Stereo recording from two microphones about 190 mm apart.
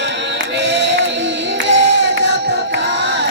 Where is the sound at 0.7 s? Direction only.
70° right (ahead or behind).